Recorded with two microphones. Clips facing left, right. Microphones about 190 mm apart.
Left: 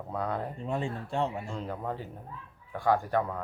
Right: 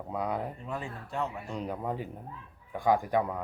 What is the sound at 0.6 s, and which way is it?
Speech, 25° left (ahead or behind).